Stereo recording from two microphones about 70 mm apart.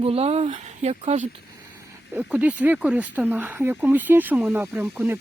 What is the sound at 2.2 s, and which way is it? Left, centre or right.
Speech, centre.